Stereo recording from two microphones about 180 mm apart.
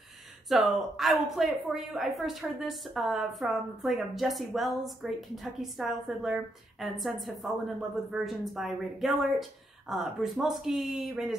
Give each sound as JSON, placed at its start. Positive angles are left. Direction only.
{"t": 0.5, "sound": "a woman's voice", "side_deg": 0}